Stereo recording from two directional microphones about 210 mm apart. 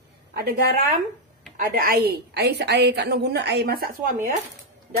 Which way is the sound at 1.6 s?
45° right (ahead or behind).